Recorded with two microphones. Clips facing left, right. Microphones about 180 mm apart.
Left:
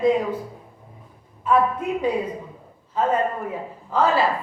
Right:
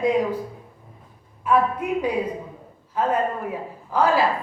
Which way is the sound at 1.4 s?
10° right (ahead or behind).